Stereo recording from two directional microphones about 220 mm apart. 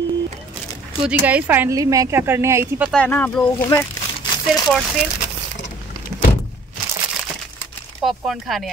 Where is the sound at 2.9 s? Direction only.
5° left (ahead or behind).